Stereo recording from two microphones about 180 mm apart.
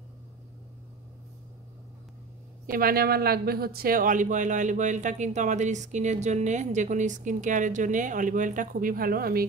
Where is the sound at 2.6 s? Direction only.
55° right (ahead or behind).